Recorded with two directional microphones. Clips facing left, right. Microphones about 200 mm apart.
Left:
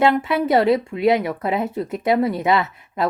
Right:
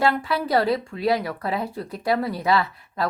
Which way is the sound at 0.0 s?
20° left (ahead or behind).